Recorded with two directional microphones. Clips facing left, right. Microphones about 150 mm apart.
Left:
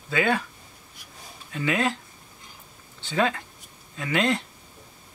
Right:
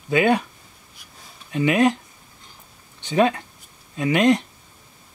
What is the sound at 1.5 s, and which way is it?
Speech, 20° right (ahead or behind).